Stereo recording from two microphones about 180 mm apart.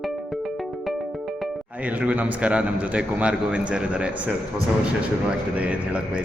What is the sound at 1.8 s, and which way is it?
A man's voice, 10° right (ahead or behind).